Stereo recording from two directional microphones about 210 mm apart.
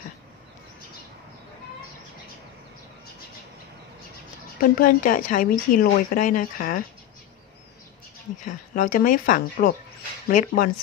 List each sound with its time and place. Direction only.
4.6 s a woman's voice: 40° left (ahead or behind)
8.5 s a woman's voice: 40° left (ahead or behind)